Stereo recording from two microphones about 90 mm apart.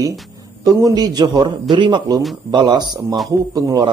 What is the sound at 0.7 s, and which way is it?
A man's voice, 40° right (ahead or behind).